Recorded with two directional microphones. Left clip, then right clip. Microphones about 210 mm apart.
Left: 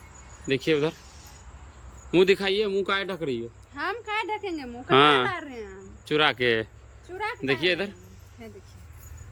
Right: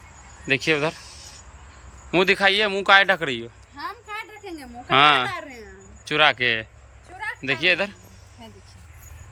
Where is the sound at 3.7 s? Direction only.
30° left (ahead or behind).